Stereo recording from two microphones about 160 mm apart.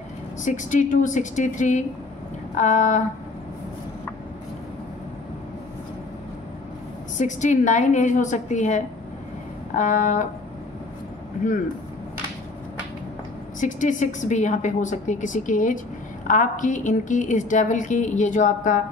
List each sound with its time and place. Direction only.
0.5 s a woman's voice: 50° left (ahead or behind)
7.2 s a woman's voice: 50° left (ahead or behind)
13.6 s a woman's voice: 50° left (ahead or behind)